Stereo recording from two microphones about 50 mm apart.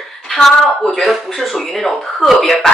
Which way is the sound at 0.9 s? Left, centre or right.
Centre.